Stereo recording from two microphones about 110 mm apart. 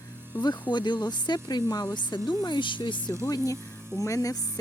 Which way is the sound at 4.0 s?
30° left (ahead or behind).